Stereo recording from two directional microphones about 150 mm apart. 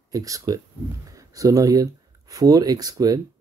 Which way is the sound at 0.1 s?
25° right (ahead or behind).